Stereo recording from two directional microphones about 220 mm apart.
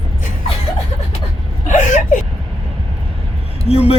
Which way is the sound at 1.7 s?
35° left (ahead or behind).